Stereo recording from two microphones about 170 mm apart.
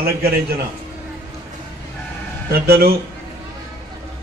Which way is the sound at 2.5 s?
65° right (ahead or behind).